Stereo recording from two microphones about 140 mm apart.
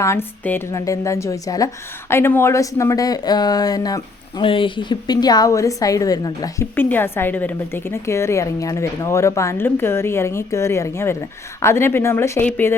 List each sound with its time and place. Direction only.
0.0 s a woman's voice: 15° left (ahead or behind)
4.4 s a woman's voice: 40° left (ahead or behind)
6.7 s a woman's voice: 15° left (ahead or behind)